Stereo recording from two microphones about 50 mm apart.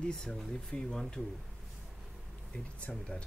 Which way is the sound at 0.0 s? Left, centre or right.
Centre.